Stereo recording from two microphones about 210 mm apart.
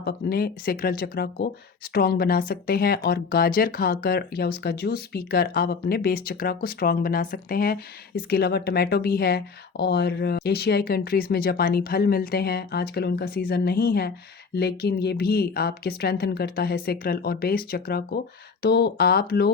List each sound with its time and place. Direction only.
0.0 s speech: 45° left (ahead or behind)